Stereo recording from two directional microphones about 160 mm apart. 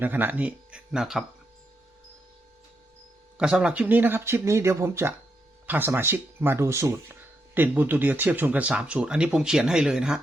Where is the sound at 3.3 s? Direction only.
5° right (ahead or behind).